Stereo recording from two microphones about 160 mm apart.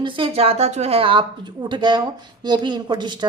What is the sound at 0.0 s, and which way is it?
A woman's voice, 35° right (ahead or behind).